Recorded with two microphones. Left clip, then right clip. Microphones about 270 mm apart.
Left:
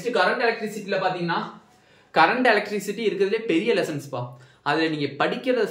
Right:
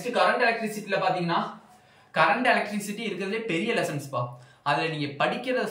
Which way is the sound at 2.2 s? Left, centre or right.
Centre.